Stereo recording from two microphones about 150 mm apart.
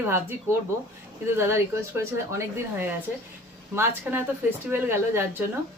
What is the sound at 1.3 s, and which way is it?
Speech, 15° right (ahead or behind).